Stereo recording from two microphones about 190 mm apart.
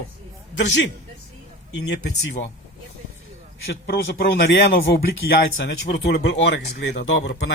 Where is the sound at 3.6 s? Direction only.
60° left (ahead or behind).